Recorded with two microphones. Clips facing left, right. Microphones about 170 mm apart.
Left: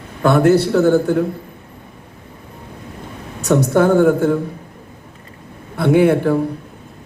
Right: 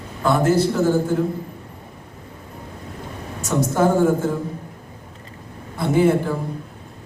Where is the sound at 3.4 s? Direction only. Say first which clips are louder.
Left 5 dB; 65° left (ahead or behind).